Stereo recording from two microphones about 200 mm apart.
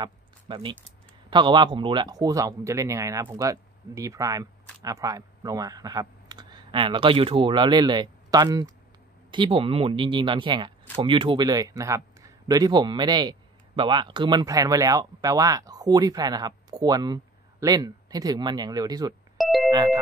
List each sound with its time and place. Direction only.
0.0 s a sound: 25° right (ahead or behind)
1.3 s a man's voice: 25° right (ahead or behind)
19.3 s ding-dong: centre (ahead or behind)
19.7 s music: 20° right (ahead or behind)